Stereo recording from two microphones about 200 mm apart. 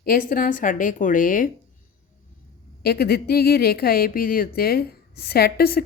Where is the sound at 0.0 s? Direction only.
45° left (ahead or behind).